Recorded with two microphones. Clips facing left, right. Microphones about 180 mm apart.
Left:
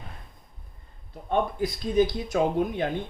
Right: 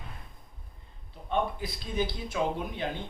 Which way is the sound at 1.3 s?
45° left (ahead or behind).